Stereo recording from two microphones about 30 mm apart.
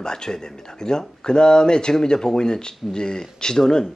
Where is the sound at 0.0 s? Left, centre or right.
Left.